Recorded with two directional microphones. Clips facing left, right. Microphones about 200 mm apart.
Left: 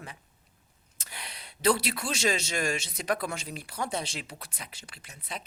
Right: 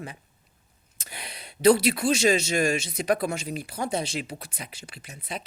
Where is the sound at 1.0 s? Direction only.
15° right (ahead or behind).